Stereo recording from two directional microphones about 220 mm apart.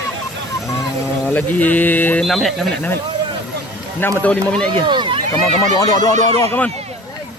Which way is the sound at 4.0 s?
10° left (ahead or behind).